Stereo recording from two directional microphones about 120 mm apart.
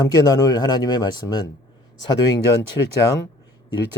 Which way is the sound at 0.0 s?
35° left (ahead or behind).